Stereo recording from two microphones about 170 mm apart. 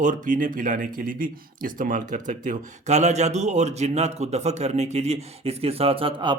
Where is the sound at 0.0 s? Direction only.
50° right (ahead or behind).